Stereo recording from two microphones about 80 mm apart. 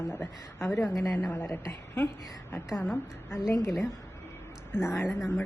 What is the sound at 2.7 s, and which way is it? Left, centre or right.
Speech, centre.